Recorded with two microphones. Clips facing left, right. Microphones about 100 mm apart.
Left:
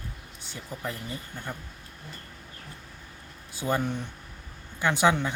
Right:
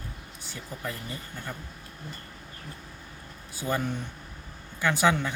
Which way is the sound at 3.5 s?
20° left (ahead or behind).